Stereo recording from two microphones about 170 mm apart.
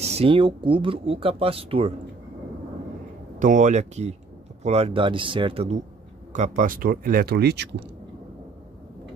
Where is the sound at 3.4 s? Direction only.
45° right (ahead or behind).